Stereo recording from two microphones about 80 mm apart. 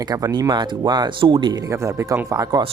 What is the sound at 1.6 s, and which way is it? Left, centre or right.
Speech, right.